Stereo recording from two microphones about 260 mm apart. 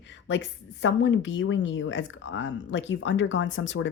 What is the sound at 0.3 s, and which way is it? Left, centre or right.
A woman's voice, left.